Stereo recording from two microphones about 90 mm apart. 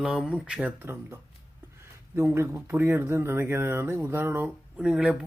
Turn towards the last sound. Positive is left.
turn(degrees=-10)  # may be behind; listen again after turning